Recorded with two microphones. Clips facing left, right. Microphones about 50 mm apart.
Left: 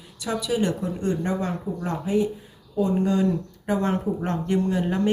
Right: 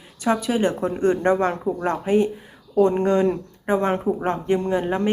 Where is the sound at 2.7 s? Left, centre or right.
Right.